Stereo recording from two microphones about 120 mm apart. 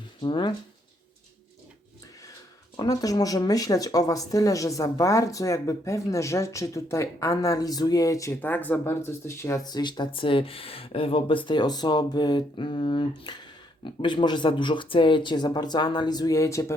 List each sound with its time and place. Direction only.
0.2 s speech: 40° left (ahead or behind)
2.7 s speech: 30° left (ahead or behind)
8.4 s speech: 15° left (ahead or behind)
9.6 s speech: 40° left (ahead or behind)